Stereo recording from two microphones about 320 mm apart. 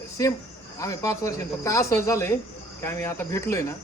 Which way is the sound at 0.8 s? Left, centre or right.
Centre.